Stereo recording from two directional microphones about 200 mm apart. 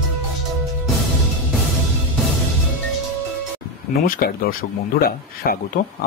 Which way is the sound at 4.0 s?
45° left (ahead or behind).